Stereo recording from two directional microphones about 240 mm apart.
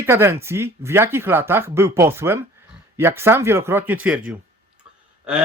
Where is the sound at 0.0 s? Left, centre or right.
Centre.